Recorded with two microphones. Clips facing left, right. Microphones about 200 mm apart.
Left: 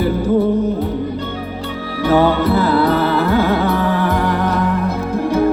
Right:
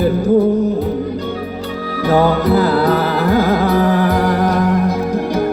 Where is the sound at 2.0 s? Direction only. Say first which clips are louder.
Even; 40° right (ahead or behind).